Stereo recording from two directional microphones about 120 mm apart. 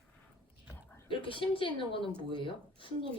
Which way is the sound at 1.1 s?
45° left (ahead or behind).